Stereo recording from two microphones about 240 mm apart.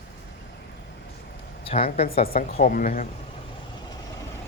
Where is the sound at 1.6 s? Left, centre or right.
Left.